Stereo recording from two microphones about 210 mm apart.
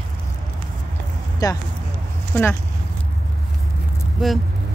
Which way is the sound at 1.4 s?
15° left (ahead or behind).